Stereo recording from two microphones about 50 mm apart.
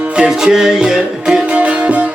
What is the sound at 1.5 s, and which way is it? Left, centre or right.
Music, right.